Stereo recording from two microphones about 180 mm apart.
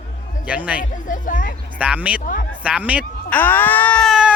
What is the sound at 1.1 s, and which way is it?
Speech, 45° left (ahead or behind).